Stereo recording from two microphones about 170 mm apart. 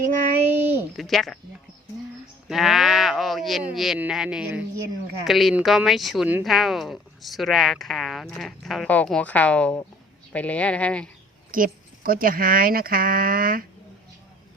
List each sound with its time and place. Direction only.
0.6 s a sound: 10° right (ahead or behind)
0.9 s speech: centre (ahead or behind)
2.5 s speech: centre (ahead or behind)
11.5 s speech: 55° right (ahead or behind)